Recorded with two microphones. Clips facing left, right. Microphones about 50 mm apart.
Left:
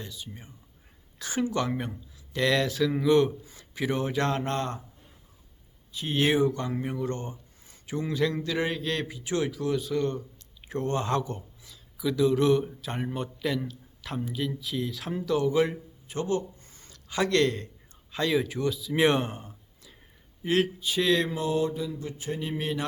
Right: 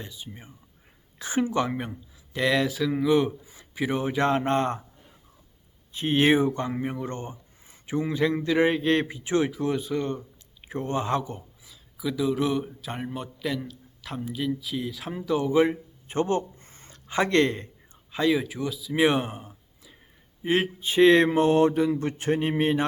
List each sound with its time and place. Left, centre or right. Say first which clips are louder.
0.0 s speech: right 1 dB; centre
5.9 s speech: right 4 dB; right
16.0 s a sound: right 4 dB; right
18.1 s speech: right 2 dB; centre
20.4 s speech: right 1 dB; right